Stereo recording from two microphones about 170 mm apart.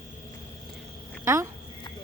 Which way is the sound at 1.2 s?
15° right (ahead or behind).